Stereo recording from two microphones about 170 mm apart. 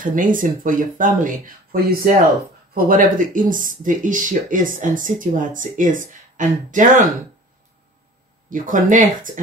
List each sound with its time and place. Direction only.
0.0 s speech: 55° right (ahead or behind)
8.5 s speech: 50° right (ahead or behind)